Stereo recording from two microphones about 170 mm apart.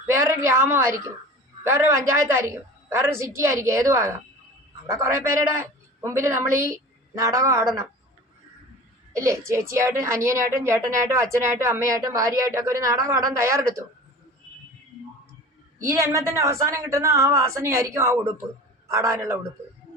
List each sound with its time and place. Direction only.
0.1 s a woman's voice: 15° right (ahead or behind)
9.1 s a woman's voice: 15° right (ahead or behind)
15.8 s a woman's voice: 15° right (ahead or behind)